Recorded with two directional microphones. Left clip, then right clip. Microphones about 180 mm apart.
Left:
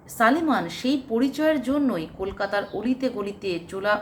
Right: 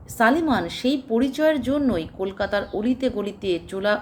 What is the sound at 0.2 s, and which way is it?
A woman's voice, 40° right (ahead or behind).